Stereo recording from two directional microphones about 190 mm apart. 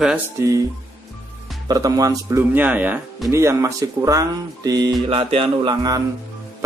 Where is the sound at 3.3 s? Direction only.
15° right (ahead or behind).